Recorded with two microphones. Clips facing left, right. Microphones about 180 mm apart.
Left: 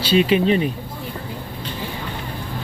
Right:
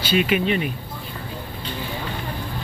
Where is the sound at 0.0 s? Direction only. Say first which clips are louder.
Left 4 dB; 30° left (ahead or behind).